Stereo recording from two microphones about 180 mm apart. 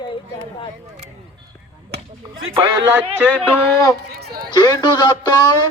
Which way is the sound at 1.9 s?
90° right.